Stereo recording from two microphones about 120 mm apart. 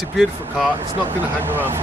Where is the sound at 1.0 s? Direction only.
15° right (ahead or behind).